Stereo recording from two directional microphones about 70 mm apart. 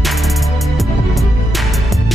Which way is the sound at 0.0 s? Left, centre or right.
Centre.